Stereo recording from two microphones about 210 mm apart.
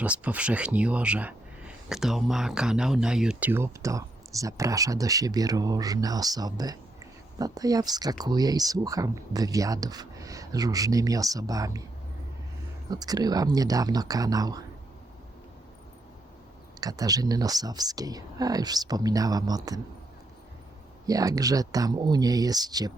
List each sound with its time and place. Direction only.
0.0 s speech: 5° right (ahead or behind)
12.9 s speech: 20° right (ahead or behind)
16.8 s speech: 15° right (ahead or behind)
21.1 s speech: 15° right (ahead or behind)